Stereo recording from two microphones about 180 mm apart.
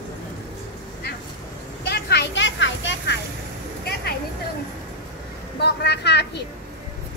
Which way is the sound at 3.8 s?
60° left (ahead or behind).